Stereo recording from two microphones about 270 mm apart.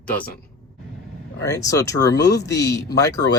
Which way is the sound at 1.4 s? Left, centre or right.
Centre.